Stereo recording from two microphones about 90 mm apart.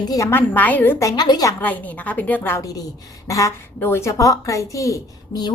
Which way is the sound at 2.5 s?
40° left (ahead or behind).